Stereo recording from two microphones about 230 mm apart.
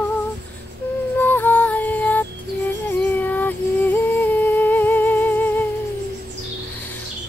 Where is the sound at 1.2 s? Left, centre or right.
Centre.